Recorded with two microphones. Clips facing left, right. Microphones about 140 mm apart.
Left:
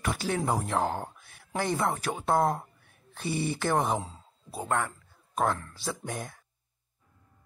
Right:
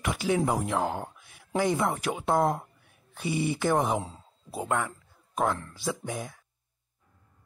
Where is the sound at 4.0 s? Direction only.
20° right (ahead or behind).